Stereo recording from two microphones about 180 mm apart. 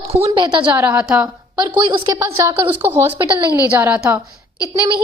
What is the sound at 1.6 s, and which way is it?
A woman's voice, 25° right (ahead or behind).